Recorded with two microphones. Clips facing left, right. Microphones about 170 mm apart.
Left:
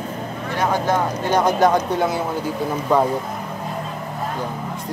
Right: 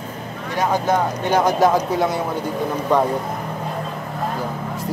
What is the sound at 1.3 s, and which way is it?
Speech, centre (ahead or behind).